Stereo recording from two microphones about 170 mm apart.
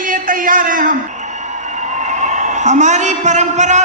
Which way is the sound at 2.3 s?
45° right (ahead or behind).